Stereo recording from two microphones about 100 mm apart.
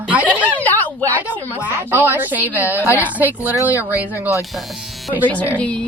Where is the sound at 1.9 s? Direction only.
20° right (ahead or behind).